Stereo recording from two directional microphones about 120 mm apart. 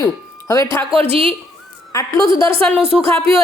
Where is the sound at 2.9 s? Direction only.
5° left (ahead or behind).